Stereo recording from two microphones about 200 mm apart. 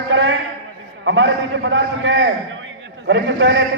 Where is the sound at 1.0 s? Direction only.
70° right (ahead or behind).